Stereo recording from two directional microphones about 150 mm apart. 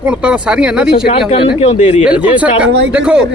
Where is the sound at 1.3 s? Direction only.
35° left (ahead or behind).